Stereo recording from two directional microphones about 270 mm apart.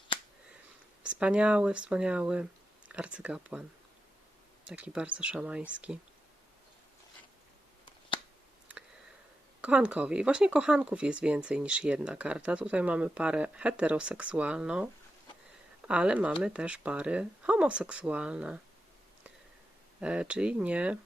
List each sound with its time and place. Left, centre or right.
1.0 s speech: centre
9.6 s speech: centre
15.9 s speech: centre
20.0 s speech: centre